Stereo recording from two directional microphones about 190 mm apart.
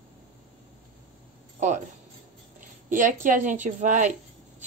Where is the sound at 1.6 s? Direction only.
40° right (ahead or behind).